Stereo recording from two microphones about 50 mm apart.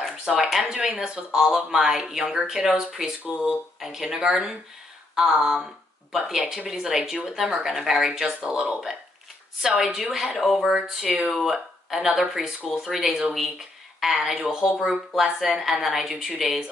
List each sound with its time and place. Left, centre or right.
0.2 s speech: centre